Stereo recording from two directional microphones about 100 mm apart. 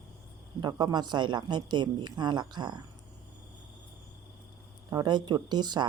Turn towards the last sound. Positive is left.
turn(degrees=-45)  # may be behind; listen again after turning